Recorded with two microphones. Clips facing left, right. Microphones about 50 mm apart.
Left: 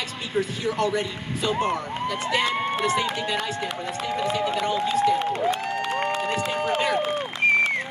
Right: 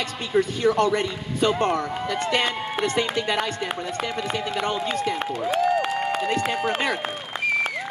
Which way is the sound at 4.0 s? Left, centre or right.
Right.